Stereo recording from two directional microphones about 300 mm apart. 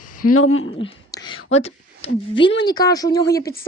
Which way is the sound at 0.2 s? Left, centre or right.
Left.